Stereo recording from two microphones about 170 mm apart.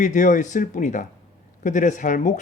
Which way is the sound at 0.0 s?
45° left (ahead or behind).